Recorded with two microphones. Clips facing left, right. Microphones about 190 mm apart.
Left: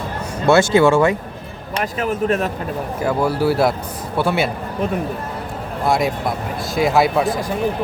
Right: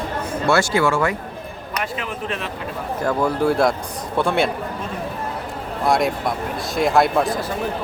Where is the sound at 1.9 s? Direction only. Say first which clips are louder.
Left 8 dB; 45° left (ahead or behind).